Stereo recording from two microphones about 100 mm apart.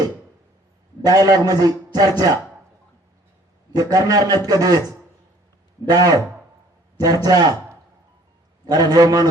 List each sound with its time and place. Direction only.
1.0 s a man's voice: 40° right (ahead or behind)
3.7 s a man's voice: 40° right (ahead or behind)
5.9 s a man's voice: 40° right (ahead or behind)
8.6 s a man's voice: 40° right (ahead or behind)